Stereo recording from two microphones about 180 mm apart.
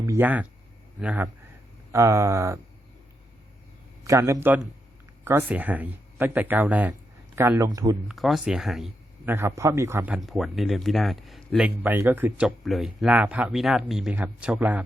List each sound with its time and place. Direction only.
0.0 s speech: 15° right (ahead or behind)
4.0 s speech: 15° right (ahead or behind)
8.0 s speech: centre (ahead or behind)